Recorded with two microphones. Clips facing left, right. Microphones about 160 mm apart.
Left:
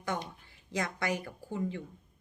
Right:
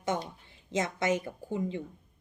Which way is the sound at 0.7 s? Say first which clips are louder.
Right 4 dB; 20° right (ahead or behind).